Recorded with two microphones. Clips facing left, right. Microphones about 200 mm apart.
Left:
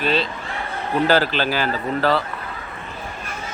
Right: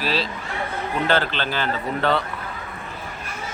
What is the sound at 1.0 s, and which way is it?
Speech, 5° left (ahead or behind).